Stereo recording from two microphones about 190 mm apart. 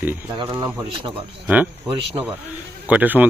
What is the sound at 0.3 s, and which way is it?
Speech, 15° right (ahead or behind).